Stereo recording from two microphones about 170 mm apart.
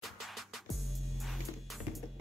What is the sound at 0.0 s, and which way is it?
Music, centre (ahead or behind).